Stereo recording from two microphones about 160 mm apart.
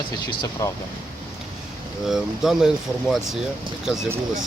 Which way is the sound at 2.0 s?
Centre (ahead or behind).